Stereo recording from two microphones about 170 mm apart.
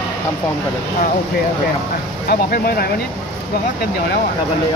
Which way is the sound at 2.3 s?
65° left (ahead or behind).